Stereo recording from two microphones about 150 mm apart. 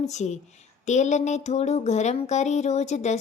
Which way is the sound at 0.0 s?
50° left (ahead or behind).